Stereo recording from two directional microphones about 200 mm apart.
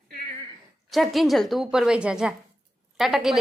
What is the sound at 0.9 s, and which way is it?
A woman's voice, centre (ahead or behind).